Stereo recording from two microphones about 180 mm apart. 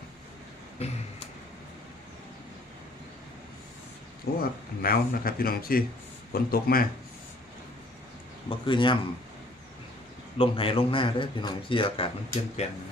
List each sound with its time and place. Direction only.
0.8 s speech: 35° left (ahead or behind)
4.4 s speech: 55° left (ahead or behind)
8.4 s a man's voice: 25° left (ahead or behind)
10.3 s a man's voice: 30° left (ahead or behind)